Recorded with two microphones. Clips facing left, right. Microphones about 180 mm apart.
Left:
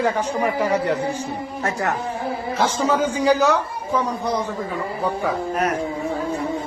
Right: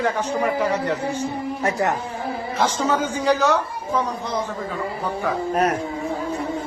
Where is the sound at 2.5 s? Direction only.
10° left (ahead or behind).